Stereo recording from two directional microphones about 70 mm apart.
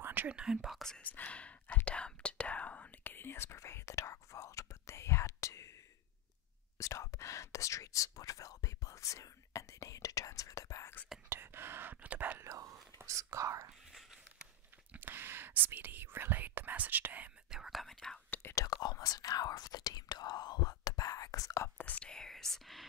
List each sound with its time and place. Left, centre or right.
0.0 s whispering: right
0.3 s speech: centre
1.0 s whispering: left
6.8 s speech: left
11.2 s speech: right
12.4 s speech: right
14.9 s speech: right
17.5 s speech: centre
18.5 s speech: left
18.8 s speech: left
21.7 s speech: left
22.1 s speech: centre